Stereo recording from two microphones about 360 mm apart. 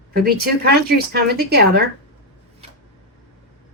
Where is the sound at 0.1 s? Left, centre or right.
Right.